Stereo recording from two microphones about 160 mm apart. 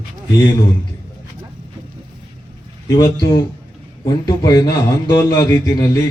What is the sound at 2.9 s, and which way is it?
A man's voice, 20° left (ahead or behind).